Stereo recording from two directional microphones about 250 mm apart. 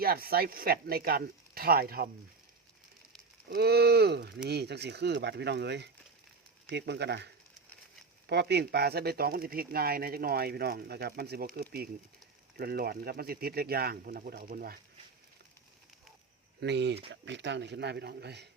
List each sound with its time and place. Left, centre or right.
0.0 s speech: right
3.5 s speech: right
8.3 s speech: right
16.6 s speech: right